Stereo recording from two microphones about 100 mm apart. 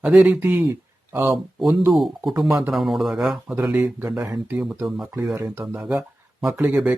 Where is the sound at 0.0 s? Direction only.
10° right (ahead or behind).